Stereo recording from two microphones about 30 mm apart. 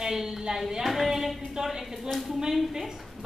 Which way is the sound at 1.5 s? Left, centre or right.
Centre.